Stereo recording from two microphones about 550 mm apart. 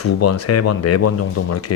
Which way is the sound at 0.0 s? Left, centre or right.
Left.